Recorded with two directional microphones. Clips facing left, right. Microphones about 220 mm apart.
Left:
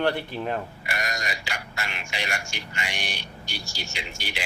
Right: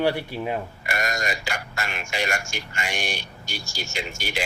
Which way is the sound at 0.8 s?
45° right (ahead or behind).